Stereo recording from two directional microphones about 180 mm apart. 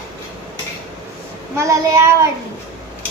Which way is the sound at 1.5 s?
15° right (ahead or behind).